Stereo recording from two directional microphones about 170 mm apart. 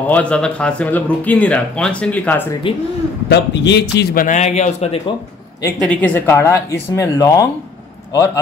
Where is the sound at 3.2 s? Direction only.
90° left; by 4.3 s 75° left (ahead or behind).